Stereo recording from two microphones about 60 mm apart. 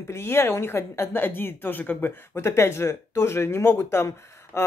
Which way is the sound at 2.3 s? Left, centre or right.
Left.